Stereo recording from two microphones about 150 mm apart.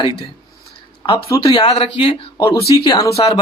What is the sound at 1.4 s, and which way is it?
Speech, 35° left (ahead or behind).